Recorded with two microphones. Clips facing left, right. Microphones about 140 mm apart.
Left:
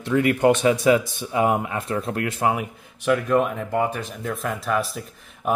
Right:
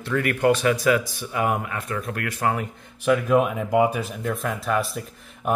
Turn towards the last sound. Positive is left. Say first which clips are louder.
# even
turn(degrees=0)  # may be behind; listen again after turning